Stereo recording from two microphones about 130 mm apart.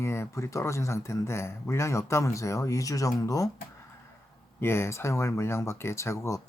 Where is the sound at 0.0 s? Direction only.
20° left (ahead or behind).